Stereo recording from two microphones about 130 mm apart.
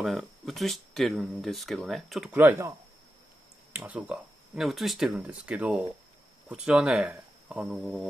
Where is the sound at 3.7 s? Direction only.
10° right (ahead or behind).